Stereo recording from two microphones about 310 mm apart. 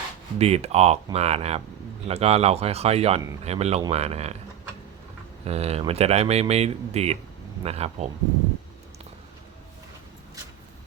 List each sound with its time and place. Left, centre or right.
0.3 s speech: centre
5.5 s speech: centre